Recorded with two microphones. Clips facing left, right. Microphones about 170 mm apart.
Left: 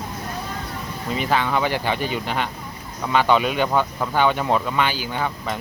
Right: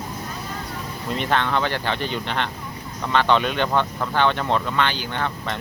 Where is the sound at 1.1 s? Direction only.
5° left (ahead or behind).